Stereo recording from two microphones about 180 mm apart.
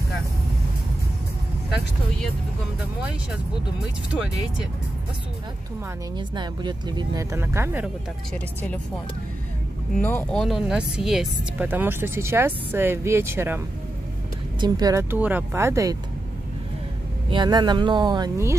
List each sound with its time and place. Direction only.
6.1 s speech: 25° right (ahead or behind)
8.3 s speech: 5° left (ahead or behind); by 13.6 s 15° right (ahead or behind)
14.6 s speech: 20° right (ahead or behind)
17.3 s speech: 25° right (ahead or behind)